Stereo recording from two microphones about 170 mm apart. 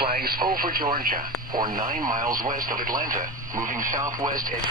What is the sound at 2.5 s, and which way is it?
Speech, 55° right (ahead or behind).